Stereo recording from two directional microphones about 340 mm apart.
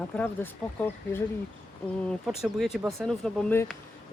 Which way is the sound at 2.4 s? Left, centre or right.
Centre.